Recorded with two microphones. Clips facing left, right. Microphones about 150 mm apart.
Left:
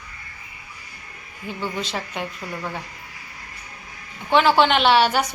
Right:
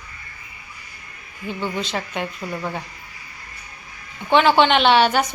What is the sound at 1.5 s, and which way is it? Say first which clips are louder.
Speech: right 2 dB; 5° left (ahead or behind).